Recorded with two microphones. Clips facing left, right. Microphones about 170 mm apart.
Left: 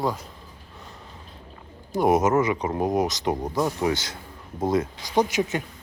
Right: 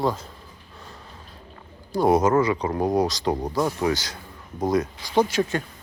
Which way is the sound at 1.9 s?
20° left (ahead or behind).